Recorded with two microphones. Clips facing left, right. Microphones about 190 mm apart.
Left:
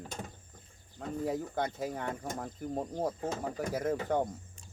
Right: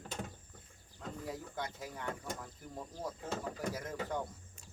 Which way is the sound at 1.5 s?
65° left (ahead or behind).